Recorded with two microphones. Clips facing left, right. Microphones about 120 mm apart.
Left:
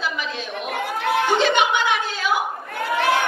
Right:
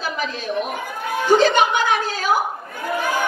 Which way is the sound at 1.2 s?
40° right (ahead or behind).